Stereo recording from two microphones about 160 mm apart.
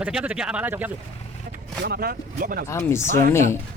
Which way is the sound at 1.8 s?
75° right (ahead or behind).